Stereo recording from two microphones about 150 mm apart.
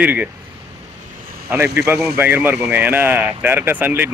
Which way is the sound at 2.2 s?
15° right (ahead or behind).